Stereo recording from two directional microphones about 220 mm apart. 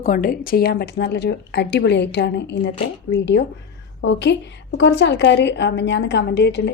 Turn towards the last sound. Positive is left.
turn(degrees=55)  # may be behind; listen again after turning